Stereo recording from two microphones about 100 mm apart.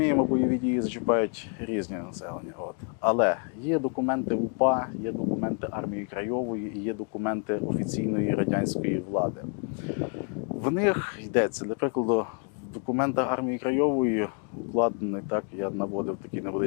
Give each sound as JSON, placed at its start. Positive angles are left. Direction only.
{"t": 0.0, "sound": "speech", "side_deg": 20}
{"t": 9.9, "sound": "a sound", "side_deg": 15}
{"t": 10.5, "sound": "speech", "side_deg": 20}